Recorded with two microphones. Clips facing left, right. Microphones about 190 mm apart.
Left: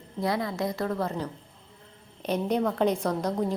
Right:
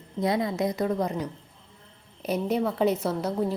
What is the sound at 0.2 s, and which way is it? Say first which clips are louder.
A woman's voice: right 3 dB; 20° right (ahead or behind).